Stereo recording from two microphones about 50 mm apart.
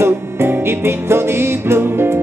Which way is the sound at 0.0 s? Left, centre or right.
Right.